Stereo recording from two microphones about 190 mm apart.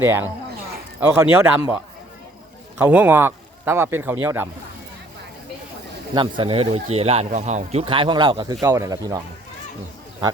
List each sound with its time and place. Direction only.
0.0 s speech: 10° right (ahead or behind)
2.7 s speech: 10° right (ahead or behind)
6.1 s speech: 25° right (ahead or behind)